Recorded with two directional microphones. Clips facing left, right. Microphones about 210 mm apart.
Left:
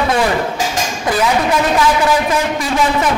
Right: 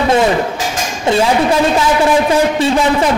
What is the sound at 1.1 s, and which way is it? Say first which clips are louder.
Speech: right 5 dB; 25° right (ahead or behind).